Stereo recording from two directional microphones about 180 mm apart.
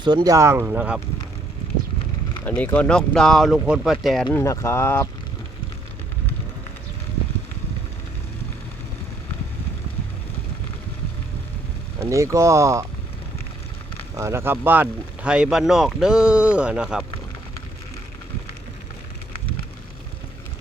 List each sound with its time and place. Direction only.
0.0 s speech: 25° right (ahead or behind); by 1.0 s 10° right (ahead or behind)
2.4 s speech: 10° left (ahead or behind)
4.3 s speech: 15° left (ahead or behind)
11.9 s speech: 15° right (ahead or behind)
14.2 s speech: 15° right (ahead or behind)